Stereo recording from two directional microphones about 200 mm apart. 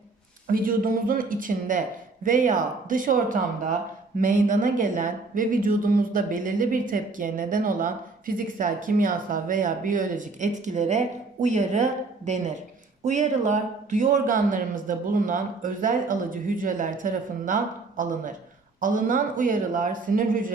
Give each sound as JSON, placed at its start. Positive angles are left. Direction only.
{"t": 0.4, "sound": "speech", "side_deg": -45}